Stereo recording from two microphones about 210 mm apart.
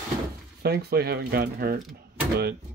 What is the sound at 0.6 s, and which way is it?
Speech, 50° right (ahead or behind).